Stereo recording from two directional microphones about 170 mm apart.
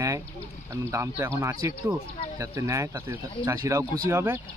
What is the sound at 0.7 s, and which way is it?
A man's voice, 15° right (ahead or behind).